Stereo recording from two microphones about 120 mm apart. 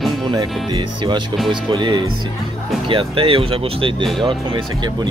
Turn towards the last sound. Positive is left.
turn(degrees=-30)  # may be behind; listen again after turning